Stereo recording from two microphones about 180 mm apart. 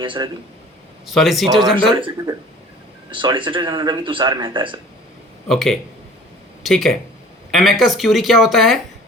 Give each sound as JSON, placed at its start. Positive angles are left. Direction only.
{"t": 0.0, "sound": "speech", "side_deg": -25}
{"t": 1.0, "sound": "speech", "side_deg": 0}
{"t": 2.0, "sound": "speech", "side_deg": -25}
{"t": 5.5, "sound": "speech", "side_deg": 0}